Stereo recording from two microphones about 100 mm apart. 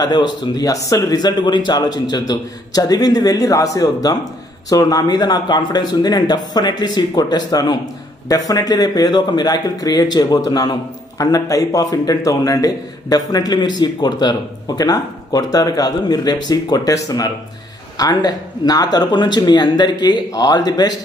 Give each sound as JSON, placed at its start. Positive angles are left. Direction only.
{"t": 0.0, "sound": "a man's voice", "side_deg": 45}